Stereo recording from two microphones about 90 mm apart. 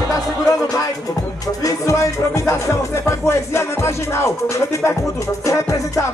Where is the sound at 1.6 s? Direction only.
35° left (ahead or behind).